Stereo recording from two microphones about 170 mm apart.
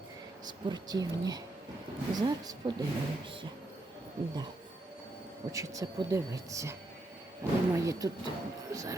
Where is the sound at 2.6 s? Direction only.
35° right (ahead or behind).